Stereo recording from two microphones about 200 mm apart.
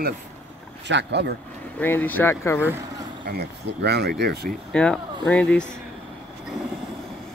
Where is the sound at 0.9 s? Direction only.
60° right (ahead or behind).